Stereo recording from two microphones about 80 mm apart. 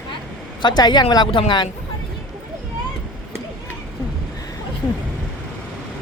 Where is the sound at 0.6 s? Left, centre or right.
Left.